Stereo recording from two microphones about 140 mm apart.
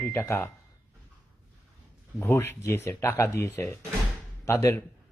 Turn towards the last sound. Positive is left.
turn(degrees=20)  # may be behind; listen again after turning